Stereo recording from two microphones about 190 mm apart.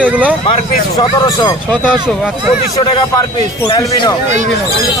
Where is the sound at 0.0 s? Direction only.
5° right (ahead or behind).